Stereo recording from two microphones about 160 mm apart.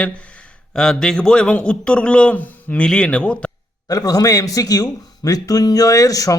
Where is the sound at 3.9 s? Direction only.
25° left (ahead or behind).